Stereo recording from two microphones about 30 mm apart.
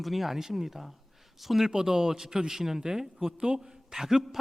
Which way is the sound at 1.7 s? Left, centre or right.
Centre.